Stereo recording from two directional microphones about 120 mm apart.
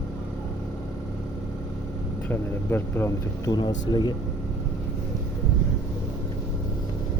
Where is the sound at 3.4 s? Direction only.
35° left (ahead or behind).